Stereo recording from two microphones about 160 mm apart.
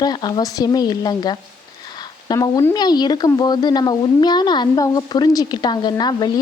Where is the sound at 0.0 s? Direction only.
25° left (ahead or behind).